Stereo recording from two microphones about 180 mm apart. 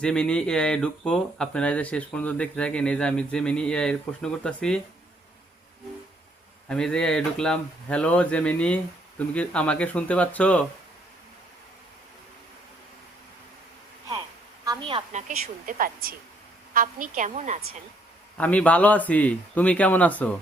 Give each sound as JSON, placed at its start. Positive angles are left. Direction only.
{"t": 0.0, "sound": "speech", "side_deg": 5}
{"t": 6.7, "sound": "speech", "side_deg": 5}
{"t": 14.6, "sound": "a sound", "side_deg": -25}
{"t": 15.6, "sound": "a woman's voice", "side_deg": -55}
{"t": 18.3, "sound": "speech", "side_deg": 10}